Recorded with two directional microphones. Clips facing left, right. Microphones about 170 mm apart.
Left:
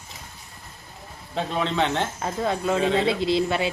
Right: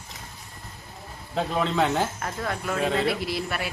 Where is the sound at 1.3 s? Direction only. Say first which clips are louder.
Even; centre (ahead or behind).